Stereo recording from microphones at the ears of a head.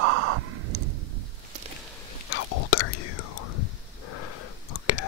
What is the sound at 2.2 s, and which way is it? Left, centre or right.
Whispering, left.